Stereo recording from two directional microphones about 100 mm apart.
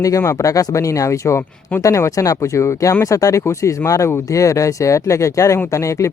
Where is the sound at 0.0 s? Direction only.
30° left (ahead or behind).